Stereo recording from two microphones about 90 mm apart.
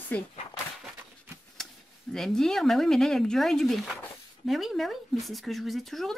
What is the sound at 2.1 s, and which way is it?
Speech, 5° left (ahead or behind).